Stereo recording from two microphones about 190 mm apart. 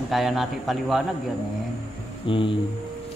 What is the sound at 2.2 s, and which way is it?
Speech, 25° left (ahead or behind).